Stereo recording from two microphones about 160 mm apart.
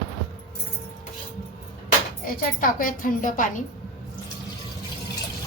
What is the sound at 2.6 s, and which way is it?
A woman's voice, 60° left (ahead or behind).